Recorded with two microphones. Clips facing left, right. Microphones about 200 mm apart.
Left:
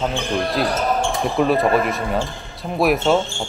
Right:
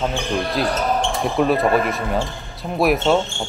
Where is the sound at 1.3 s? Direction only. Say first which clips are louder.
Even; centre (ahead or behind).